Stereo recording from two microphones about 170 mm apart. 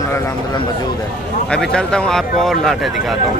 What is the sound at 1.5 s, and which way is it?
Speech, 5° left (ahead or behind).